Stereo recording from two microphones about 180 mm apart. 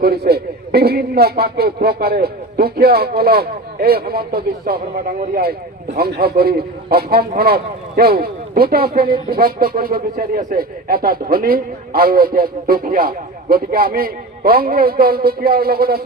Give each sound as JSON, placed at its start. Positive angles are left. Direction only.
{"t": 0.0, "sound": "a man's voice", "side_deg": -60}